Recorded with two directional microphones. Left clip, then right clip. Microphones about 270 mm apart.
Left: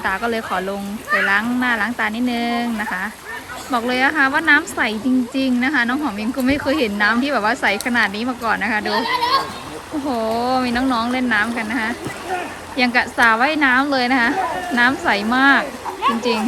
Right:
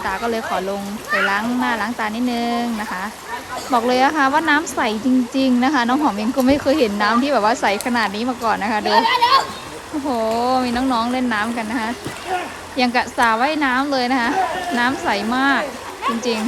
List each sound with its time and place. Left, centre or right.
0.0 s a woman's voice: centre
8.9 s speech: centre
10.1 s a woman's voice: centre